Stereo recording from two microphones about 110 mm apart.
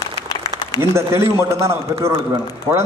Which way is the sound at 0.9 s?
25° right (ahead or behind).